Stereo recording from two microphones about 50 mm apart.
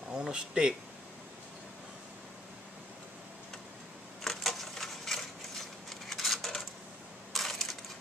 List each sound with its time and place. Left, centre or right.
0.1 s speech: centre
4.2 s a sound: centre
7.3 s coin: centre